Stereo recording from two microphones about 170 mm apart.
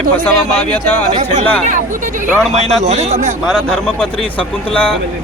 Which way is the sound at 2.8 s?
40° right (ahead or behind).